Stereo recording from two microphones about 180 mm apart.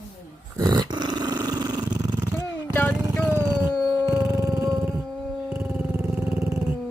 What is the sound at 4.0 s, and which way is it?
Howl, 15° right (ahead or behind).